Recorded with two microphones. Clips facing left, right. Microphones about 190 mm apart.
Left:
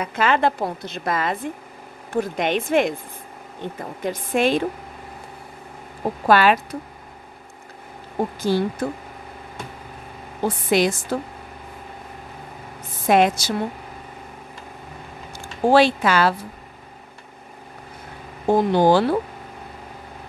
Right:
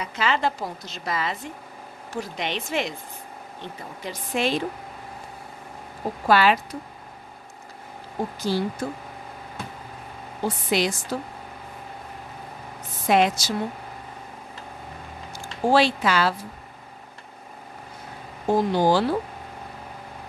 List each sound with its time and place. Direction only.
0.0 s a woman's voice: 55° left (ahead or behind)
6.2 s a woman's voice: 50° left (ahead or behind)
8.4 s a woman's voice: 55° left (ahead or behind)
10.7 s a woman's voice: 50° left (ahead or behind)
13.0 s a woman's voice: 50° left (ahead or behind)
15.7 s a woman's voice: 55° left (ahead or behind)
18.5 s a woman's voice: 60° left (ahead or behind)